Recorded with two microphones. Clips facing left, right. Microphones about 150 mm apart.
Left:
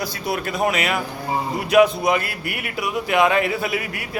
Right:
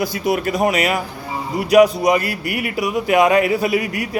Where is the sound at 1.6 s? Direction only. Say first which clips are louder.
Right 4 dB; 40° right (ahead or behind).